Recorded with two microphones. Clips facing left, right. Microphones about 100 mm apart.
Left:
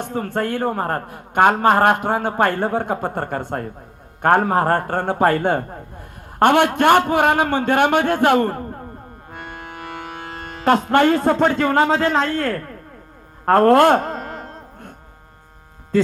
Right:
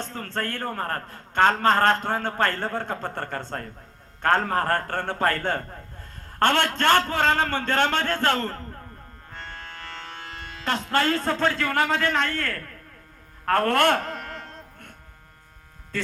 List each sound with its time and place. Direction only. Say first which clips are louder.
0.0 s a man's voice: left 8 dB; 15° left (ahead or behind)
9.3 s music: left 5 dB; 15° left (ahead or behind)
10.3 s music: left 12 dB; 50° left (ahead or behind)
10.8 s a man's voice: left 5 dB; 20° left (ahead or behind)
13.4 s a sound: left 9 dB; 35° left (ahead or behind)